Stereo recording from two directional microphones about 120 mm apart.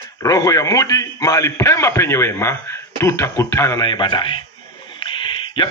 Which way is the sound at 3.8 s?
40° left (ahead or behind).